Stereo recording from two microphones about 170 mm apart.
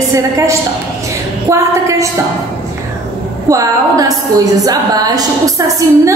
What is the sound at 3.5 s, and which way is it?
A woman's voice, 20° right (ahead or behind).